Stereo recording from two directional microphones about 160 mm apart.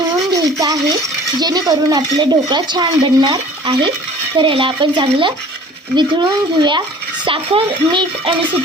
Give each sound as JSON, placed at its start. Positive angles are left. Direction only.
{"t": 0.3, "sound": "stir", "side_deg": -20}
{"t": 1.4, "sound": "speech", "side_deg": -25}
{"t": 4.4, "sound": "speech", "side_deg": -30}